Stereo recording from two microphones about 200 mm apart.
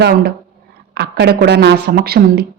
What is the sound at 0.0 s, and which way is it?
A woman's voice, 50° right (ahead or behind).